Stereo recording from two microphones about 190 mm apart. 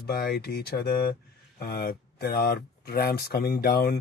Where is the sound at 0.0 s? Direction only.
55° left (ahead or behind).